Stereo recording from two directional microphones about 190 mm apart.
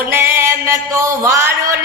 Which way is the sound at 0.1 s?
10° right (ahead or behind).